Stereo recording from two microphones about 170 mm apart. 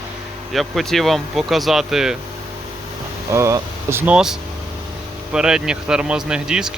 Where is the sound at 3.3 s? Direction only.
15° right (ahead or behind).